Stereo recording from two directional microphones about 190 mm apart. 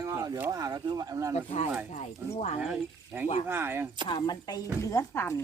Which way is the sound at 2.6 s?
5° right (ahead or behind).